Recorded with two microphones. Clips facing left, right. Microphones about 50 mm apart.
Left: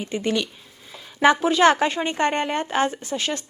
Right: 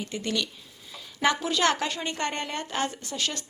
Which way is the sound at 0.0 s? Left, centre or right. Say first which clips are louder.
Left 6 dB; left.